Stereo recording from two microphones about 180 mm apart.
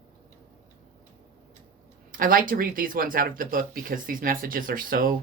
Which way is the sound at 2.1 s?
50° right (ahead or behind).